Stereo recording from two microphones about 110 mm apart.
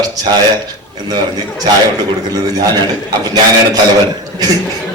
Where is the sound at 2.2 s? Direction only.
35° right (ahead or behind).